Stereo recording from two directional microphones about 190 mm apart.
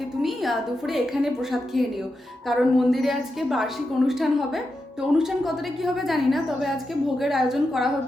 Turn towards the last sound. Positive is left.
turn(degrees=0)  # may be behind; listen again after turning